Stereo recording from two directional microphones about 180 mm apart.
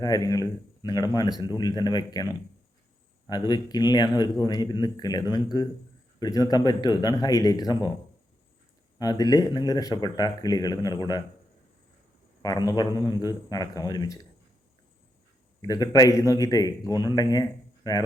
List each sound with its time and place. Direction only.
0.0 s a man's voice: 20° left (ahead or behind)
9.0 s a man's voice: 20° left (ahead or behind)
12.4 s a man's voice: 20° left (ahead or behind)
15.6 s a man's voice: 20° left (ahead or behind)